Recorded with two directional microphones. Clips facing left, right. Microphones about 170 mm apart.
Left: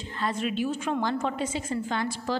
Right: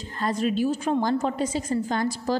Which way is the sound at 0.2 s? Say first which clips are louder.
Right 4 dB; 40° right (ahead or behind).